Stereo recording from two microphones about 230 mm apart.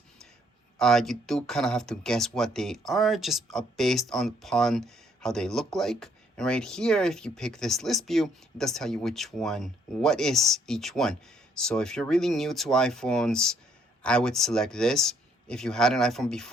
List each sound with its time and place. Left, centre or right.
0.8 s speech: centre